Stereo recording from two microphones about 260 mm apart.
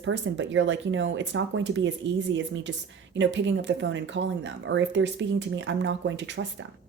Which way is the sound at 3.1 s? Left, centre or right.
Right.